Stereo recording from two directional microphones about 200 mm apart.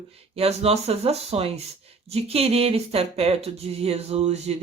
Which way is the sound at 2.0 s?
30° right (ahead or behind).